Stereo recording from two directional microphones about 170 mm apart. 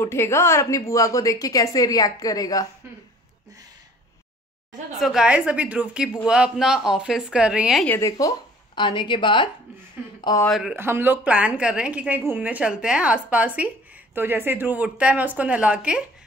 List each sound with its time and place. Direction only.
0.0 s a woman's voice: 15° left (ahead or behind)
4.9 s a woman's voice: centre (ahead or behind)
7.8 s speech: 15° left (ahead or behind)
8.7 s a woman's voice: 25° left (ahead or behind)
10.4 s a woman's voice: centre (ahead or behind)